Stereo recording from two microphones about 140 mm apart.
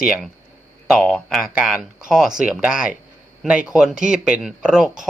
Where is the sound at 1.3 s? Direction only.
Centre (ahead or behind).